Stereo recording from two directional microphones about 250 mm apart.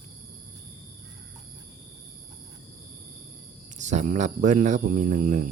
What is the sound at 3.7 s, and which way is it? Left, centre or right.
Speech, right.